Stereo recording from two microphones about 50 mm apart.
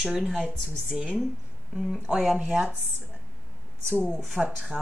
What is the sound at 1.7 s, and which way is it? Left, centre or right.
Speech, centre.